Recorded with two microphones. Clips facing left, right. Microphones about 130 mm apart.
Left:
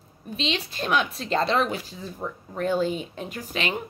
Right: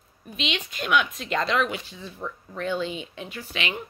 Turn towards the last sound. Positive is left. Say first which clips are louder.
# left 3 dB
turn(degrees=40)  # may be behind; listen again after turning